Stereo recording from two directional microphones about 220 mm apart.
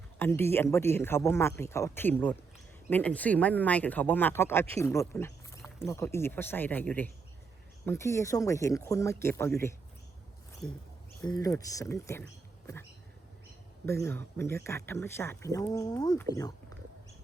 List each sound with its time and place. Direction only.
0.2 s speech: 10° left (ahead or behind)
11.2 s speech: 15° left (ahead or behind)
13.8 s speech: 10° left (ahead or behind)